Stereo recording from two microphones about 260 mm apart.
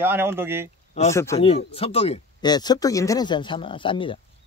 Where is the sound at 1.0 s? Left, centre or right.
Left.